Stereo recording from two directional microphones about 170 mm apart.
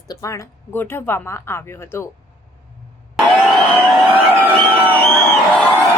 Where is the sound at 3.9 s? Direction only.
10° right (ahead or behind).